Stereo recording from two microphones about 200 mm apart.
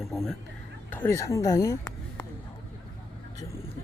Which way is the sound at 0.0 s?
Centre (ahead or behind).